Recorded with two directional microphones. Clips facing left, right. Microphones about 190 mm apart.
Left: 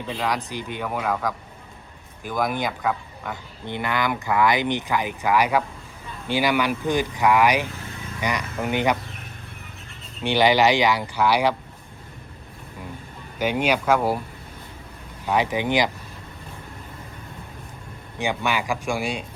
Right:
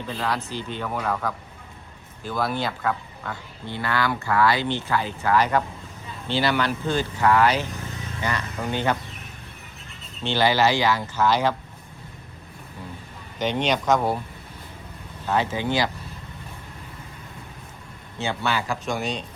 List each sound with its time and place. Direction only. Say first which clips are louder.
0.1 s speech: left 1 dB; 15° left (ahead or behind)
10.2 s speech: left 2 dB; 15° left (ahead or behind)
13.4 s speech: left 1 dB; 10° left (ahead or behind)
15.3 s speech: left 2 dB; 15° left (ahead or behind)
18.2 s speech: left 1 dB; 15° left (ahead or behind)